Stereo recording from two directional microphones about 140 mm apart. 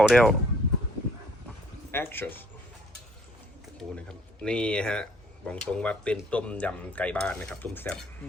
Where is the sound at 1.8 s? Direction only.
15° left (ahead or behind).